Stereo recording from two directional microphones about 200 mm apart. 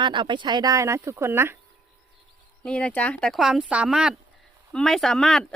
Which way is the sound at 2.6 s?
5° left (ahead or behind).